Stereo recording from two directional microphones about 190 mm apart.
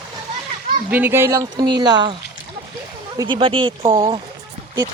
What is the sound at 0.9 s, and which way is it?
Speech, 10° right (ahead or behind).